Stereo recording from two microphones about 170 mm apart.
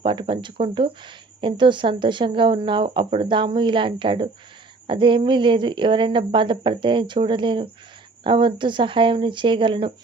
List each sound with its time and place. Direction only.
0.0 s speech: 30° right (ahead or behind)